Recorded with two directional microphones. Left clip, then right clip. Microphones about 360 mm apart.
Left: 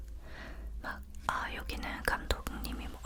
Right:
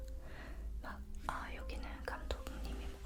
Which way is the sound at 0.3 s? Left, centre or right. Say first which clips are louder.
Left 9 dB; centre.